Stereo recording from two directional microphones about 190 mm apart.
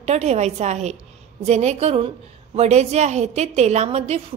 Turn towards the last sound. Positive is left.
turn(degrees=-35)  # may be behind; listen again after turning